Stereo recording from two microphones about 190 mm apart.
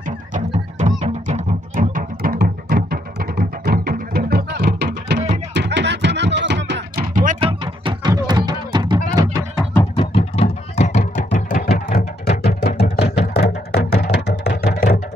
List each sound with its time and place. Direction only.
0.0 s music: 40° right (ahead or behind); by 7.1 s 65° right (ahead or behind)
7.3 s music: 25° right (ahead or behind)
9.9 s music: 30° left (ahead or behind); by 12.8 s 55° left (ahead or behind)
12.9 s a sound: 55° left (ahead or behind)
13.3 s music: 55° left (ahead or behind)